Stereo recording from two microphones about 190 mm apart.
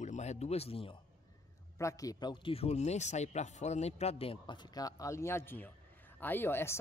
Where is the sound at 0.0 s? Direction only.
35° left (ahead or behind).